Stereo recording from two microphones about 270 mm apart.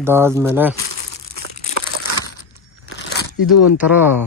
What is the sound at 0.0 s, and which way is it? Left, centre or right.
Speech, centre.